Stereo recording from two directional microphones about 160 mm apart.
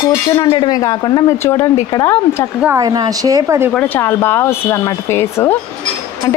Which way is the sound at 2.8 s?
25° right (ahead or behind).